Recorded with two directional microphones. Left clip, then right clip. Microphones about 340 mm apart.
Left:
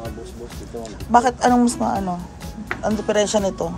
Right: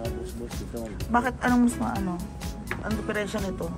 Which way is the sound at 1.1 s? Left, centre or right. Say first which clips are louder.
Left 9 dB; centre.